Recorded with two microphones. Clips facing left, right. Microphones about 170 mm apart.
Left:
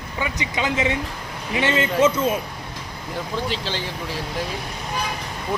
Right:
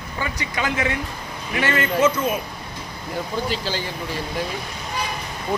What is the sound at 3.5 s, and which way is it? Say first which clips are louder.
Speech: right 1 dB; centre (ahead or behind).